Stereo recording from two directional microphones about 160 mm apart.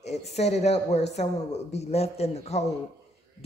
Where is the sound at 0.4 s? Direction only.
45° left (ahead or behind).